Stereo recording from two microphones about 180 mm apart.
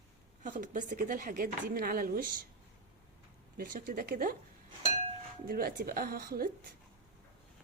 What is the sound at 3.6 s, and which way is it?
Speech, 50° right (ahead or behind).